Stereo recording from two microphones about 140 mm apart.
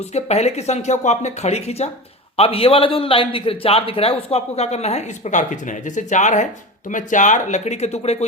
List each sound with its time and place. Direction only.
0.1 s a man's voice: 50° left (ahead or behind)